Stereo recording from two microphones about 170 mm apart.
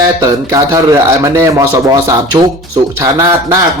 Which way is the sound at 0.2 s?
20° right (ahead or behind).